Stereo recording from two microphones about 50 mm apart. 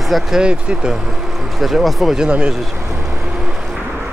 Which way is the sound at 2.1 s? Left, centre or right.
Centre.